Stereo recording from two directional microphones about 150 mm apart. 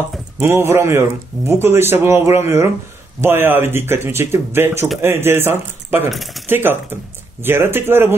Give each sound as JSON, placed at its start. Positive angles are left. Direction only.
{"t": 0.4, "sound": "speech", "side_deg": -15}
{"t": 6.0, "sound": "speech", "side_deg": 0}
{"t": 6.5, "sound": "speech", "side_deg": -15}